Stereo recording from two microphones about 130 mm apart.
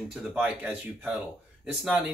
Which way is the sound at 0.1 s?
5° right (ahead or behind).